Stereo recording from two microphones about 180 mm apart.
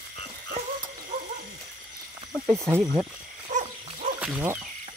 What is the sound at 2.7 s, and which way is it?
Speech, 5° right (ahead or behind).